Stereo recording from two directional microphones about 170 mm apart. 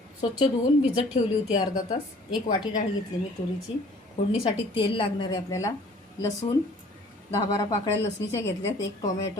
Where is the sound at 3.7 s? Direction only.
30° left (ahead or behind).